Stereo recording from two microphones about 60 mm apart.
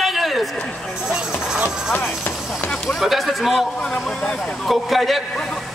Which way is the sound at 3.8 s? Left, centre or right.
Centre.